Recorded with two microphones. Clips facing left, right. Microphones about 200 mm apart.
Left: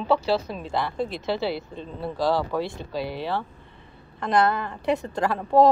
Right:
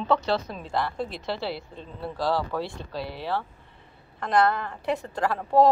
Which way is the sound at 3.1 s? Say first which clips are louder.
Right 1 dB; 20° left (ahead or behind).